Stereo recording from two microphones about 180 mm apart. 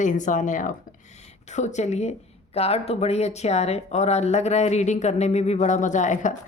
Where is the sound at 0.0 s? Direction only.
45° left (ahead or behind).